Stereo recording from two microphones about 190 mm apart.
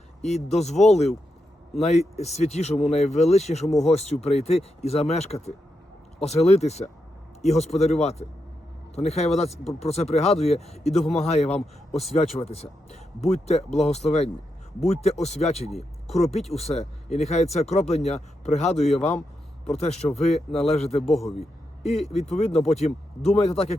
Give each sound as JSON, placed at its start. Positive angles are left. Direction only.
{"t": 0.2, "sound": "speech", "side_deg": 35}
{"t": 21.1, "sound": "speech", "side_deg": 0}
{"t": 22.3, "sound": "speech", "side_deg": 35}